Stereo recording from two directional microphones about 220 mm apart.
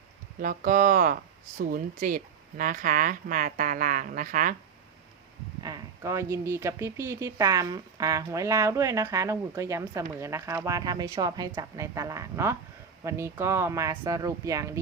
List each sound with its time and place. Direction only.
0.4 s speech: 40° right (ahead or behind)
5.6 s speech: 15° right (ahead or behind)